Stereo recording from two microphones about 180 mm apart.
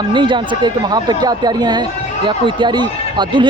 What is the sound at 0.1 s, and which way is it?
Speech, 25° right (ahead or behind).